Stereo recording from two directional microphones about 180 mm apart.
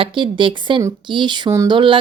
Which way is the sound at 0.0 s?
30° right (ahead or behind).